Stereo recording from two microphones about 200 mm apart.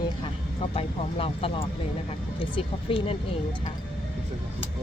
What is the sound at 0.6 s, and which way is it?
Speech, 30° left (ahead or behind).